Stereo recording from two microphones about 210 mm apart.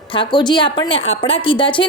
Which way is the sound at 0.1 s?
20° left (ahead or behind).